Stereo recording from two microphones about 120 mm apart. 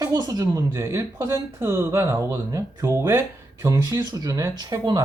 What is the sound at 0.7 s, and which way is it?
Speech, 20° right (ahead or behind).